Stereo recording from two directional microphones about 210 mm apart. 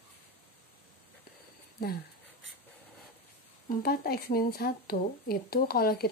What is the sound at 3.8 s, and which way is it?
Speech, 45° left (ahead or behind).